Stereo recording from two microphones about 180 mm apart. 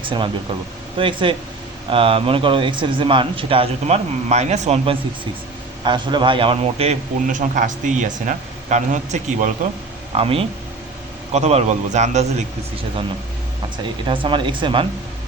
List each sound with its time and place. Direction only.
0.0 s a man's voice: 30° right (ahead or behind)
5.8 s a man's voice: 25° right (ahead or behind); by 9.5 s 45° right (ahead or behind)
10.2 s a man's voice: 30° right (ahead or behind)
14.1 s speech: 30° right (ahead or behind)